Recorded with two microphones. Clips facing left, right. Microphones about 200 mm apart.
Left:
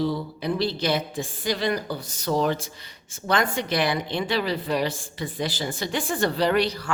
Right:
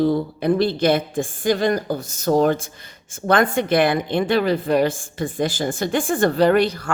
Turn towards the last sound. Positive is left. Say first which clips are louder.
# right 6 dB
turn(degrees=-50)  # may be behind; listen again after turning